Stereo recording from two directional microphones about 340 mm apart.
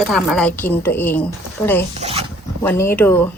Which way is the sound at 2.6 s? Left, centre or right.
Centre.